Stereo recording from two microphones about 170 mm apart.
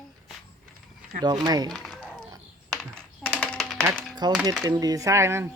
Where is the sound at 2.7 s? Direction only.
5° left (ahead or behind).